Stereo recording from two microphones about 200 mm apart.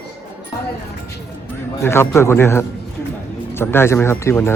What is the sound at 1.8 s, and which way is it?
Speech, 15° left (ahead or behind).